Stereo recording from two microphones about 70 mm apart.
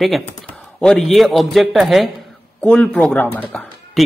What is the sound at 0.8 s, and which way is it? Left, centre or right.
Speech, centre.